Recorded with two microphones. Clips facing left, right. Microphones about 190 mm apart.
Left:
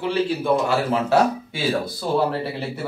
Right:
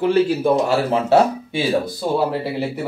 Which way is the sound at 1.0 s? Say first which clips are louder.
Right 3 dB; 30° right (ahead or behind).